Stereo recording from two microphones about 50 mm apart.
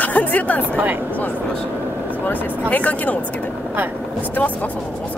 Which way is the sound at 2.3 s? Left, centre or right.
Left.